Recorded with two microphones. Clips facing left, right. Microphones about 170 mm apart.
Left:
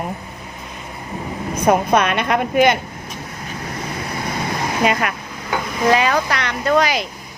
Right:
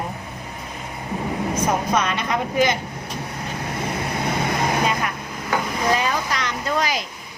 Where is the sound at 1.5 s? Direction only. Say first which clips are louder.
Left 7 dB; 60° left (ahead or behind).